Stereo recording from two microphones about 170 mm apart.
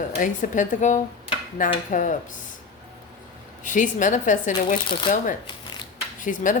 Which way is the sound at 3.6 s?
50° left (ahead or behind).